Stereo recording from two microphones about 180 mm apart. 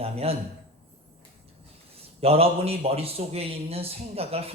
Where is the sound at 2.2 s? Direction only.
35° right (ahead or behind).